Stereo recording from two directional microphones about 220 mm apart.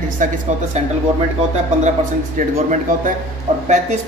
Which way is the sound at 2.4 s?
35° right (ahead or behind).